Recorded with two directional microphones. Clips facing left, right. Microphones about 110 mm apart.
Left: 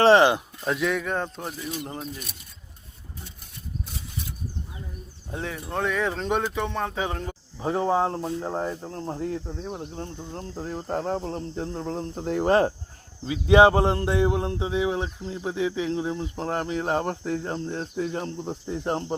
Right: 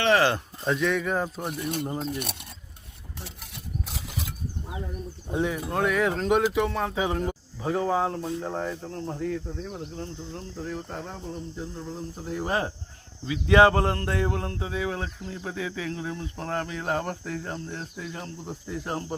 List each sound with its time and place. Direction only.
0.2 s speech: 15° left (ahead or behind)
0.6 s speech: centre (ahead or behind)
1.5 s speech: 55° right (ahead or behind)
1.8 s speech: 5° left (ahead or behind)
2.0 s speech: 65° right (ahead or behind)
3.2 s a sound: 80° right
5.3 s speech: 15° right (ahead or behind)
7.6 s speech: 30° left (ahead or behind)
10.2 s speech: 40° left (ahead or behind)
11.3 s cricket: 75° left (ahead or behind)
12.2 s speech: 55° left (ahead or behind)
13.2 s speech: 20° left (ahead or behind)
18.3 s speech: 25° left (ahead or behind)